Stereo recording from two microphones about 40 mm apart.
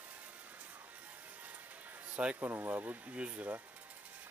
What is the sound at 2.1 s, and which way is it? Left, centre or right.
Speech, right.